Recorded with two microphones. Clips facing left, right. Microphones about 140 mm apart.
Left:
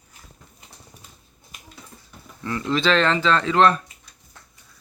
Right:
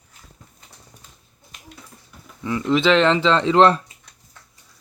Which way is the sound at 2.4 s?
15° right (ahead or behind).